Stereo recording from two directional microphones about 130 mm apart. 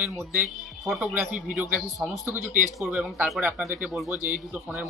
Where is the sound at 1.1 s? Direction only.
10° right (ahead or behind).